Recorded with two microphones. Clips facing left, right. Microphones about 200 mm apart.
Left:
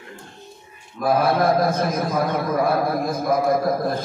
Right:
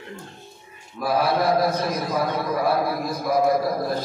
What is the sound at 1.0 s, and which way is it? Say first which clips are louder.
A man's voice: left 3 dB; 50° left (ahead or behind).